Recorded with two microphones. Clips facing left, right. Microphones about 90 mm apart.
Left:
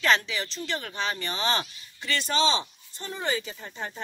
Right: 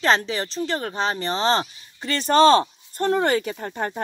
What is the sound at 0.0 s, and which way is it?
Speech, 35° right (ahead or behind).